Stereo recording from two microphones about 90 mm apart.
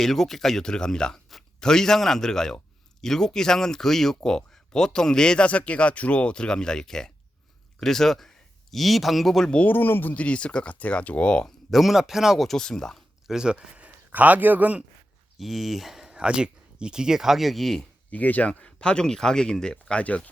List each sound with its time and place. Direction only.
0.0 s speech: 5° left (ahead or behind)
11.7 s speech: centre (ahead or behind)
13.3 s a man's voice: 10° right (ahead or behind)
15.4 s speech: centre (ahead or behind)
18.1 s speech: 15° left (ahead or behind)